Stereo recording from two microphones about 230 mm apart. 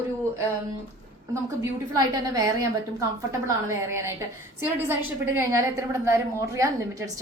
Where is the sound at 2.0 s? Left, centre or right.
Centre.